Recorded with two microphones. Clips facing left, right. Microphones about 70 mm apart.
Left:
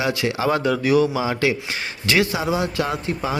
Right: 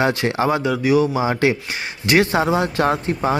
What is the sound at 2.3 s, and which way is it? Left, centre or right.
Speech, right.